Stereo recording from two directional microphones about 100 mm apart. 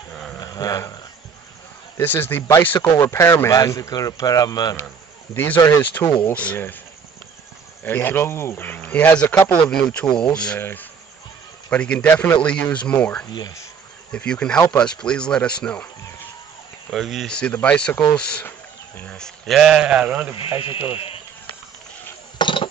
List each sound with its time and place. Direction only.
0.4 s a sound: 40° left (ahead or behind)
2.0 s speech: 20° left (ahead or behind)
3.0 s speech: 30° left (ahead or behind)
5.3 s speech: 20° left (ahead or behind)
6.0 s speech: 35° left (ahead or behind)
6.3 s speech: 15° left (ahead or behind)
7.8 s speech: 20° left (ahead or behind)
9.7 s speech: 10° left (ahead or behind)
13.3 s speech: 40° left (ahead or behind)
14.1 s speech: 10° left (ahead or behind)
16.9 s speech: centre (ahead or behind)
17.3 s speech: 10° left (ahead or behind); by 20.3 s 15° right (ahead or behind)
20.9 s speech: 70° left (ahead or behind)
22.4 s a sound: 55° left (ahead or behind)